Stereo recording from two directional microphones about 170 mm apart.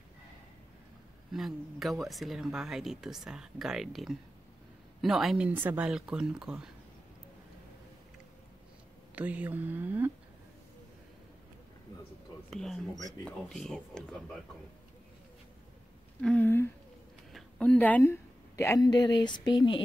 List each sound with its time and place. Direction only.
1.3 s speech: centre (ahead or behind)
9.1 s speech: 10° right (ahead or behind)
12.4 s speech: centre (ahead or behind)
16.2 s a woman's voice: 5° left (ahead or behind); by 19.8 s 25° left (ahead or behind)